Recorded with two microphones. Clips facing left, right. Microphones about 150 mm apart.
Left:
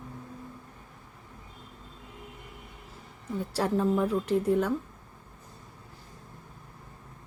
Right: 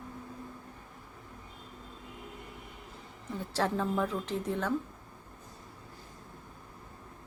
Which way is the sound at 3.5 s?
10° left (ahead or behind).